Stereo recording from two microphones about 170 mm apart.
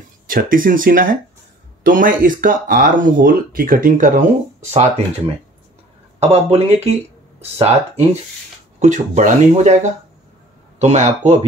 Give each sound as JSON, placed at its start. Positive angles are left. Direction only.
{"t": 0.3, "sound": "speech", "side_deg": -55}
{"t": 4.6, "sound": "speech", "side_deg": -40}
{"t": 6.1, "sound": "speech", "side_deg": -35}